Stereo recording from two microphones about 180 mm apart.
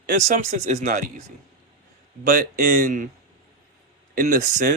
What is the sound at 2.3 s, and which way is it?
Speech, 55° right (ahead or behind).